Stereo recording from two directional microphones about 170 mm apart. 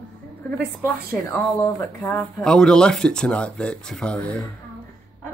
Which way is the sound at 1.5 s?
15° left (ahead or behind).